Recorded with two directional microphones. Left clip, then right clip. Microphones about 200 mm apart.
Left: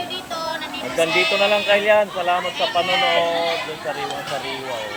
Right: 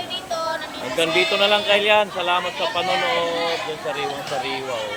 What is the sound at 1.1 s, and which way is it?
Speech, 15° right (ahead or behind).